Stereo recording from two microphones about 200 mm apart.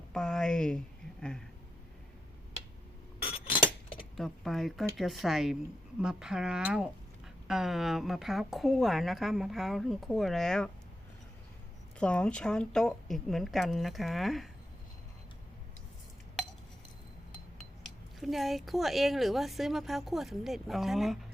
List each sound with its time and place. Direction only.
0.1 s speech: 5° left (ahead or behind)
3.2 s a sound: 25° left (ahead or behind)
4.2 s speech: centre (ahead or behind)
11.9 s speech: 5° left (ahead or behind)
17.6 s speech: centre (ahead or behind)